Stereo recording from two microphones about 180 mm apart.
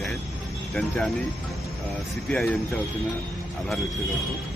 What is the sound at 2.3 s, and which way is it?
Speech, 5° left (ahead or behind).